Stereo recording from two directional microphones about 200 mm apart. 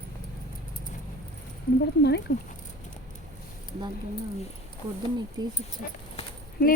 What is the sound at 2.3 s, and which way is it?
Speech, 55° left (ahead or behind).